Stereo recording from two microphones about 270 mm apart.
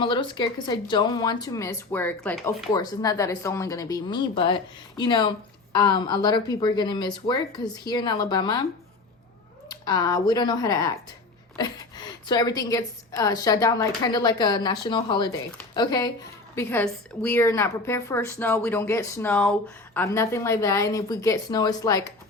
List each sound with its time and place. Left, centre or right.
0.0 s a woman's voice: centre
9.6 s a woman's voice: centre